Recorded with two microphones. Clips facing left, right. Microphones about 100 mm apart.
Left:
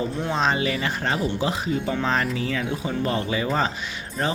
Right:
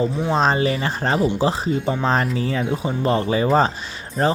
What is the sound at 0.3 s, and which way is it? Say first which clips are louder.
Speech: right 4 dB; 35° right (ahead or behind).